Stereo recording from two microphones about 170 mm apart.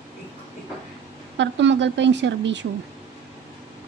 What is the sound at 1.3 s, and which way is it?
Child singing, 90° right.